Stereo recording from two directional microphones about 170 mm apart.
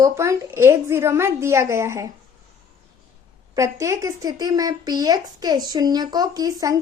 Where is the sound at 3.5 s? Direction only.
20° right (ahead or behind).